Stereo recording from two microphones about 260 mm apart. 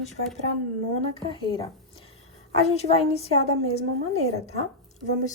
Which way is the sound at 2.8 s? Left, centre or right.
Left.